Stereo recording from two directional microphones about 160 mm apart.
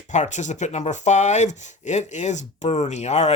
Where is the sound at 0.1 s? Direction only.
50° left (ahead or behind).